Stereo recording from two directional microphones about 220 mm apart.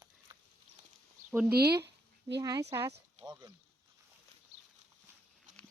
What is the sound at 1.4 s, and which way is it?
Speech, 45° right (ahead or behind).